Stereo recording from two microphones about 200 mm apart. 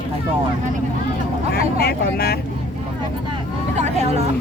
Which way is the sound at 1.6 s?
50° left (ahead or behind).